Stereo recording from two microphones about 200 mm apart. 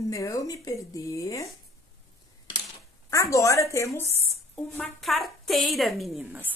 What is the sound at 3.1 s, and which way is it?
Speech, 15° left (ahead or behind).